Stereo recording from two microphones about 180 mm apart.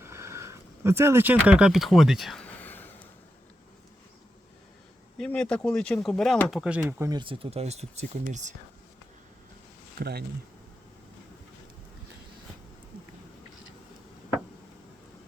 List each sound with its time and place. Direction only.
0.0 s a sound: 15° right (ahead or behind); by 2.9 s 10° left (ahead or behind)
5.1 s speech: 5° left (ahead or behind)
7.1 s speech: 25° right (ahead or behind); by 8.5 s 45° right (ahead or behind)
10.0 s speech: 60° right (ahead or behind)